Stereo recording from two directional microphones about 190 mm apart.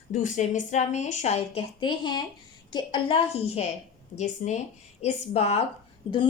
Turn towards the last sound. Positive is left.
turn(degrees=30)  # may be behind; listen again after turning